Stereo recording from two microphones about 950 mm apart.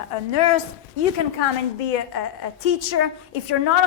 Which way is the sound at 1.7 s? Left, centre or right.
Left.